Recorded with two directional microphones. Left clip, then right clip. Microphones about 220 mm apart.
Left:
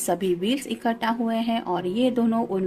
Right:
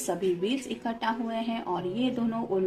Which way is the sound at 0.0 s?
45° left (ahead or behind).